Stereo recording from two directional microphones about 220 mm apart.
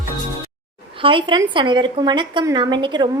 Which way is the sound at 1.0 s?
25° right (ahead or behind).